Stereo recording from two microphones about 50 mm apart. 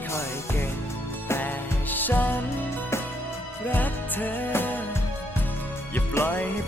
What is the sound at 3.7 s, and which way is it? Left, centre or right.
Music, left.